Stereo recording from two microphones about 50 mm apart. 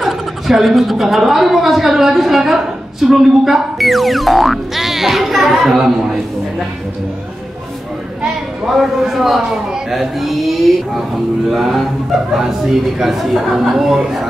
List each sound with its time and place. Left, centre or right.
0.0 s a woman's voice: centre
8.6 s a woman's voice: centre
13.0 s a woman's voice: centre